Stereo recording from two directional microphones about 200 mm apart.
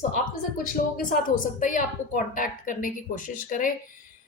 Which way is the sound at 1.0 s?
45° left (ahead or behind).